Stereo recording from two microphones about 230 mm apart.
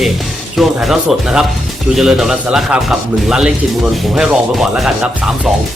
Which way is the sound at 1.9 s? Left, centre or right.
Centre.